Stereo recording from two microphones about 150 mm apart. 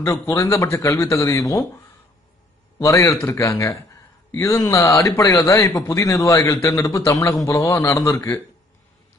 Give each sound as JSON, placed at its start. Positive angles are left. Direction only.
{"t": 0.0, "sound": "speech", "side_deg": 20}
{"t": 2.8, "sound": "speech", "side_deg": 20}